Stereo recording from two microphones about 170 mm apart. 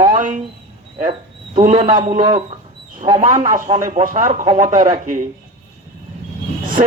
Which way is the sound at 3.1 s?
50° right (ahead or behind).